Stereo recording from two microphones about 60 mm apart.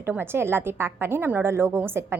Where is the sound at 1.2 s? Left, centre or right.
Right.